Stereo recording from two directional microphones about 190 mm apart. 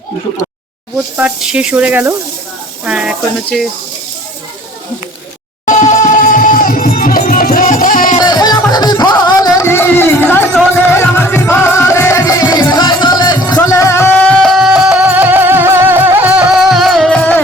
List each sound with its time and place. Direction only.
0.9 s speech: 5° right (ahead or behind)
5.6 s music: 40° left (ahead or behind)
8.2 s music: 20° left (ahead or behind)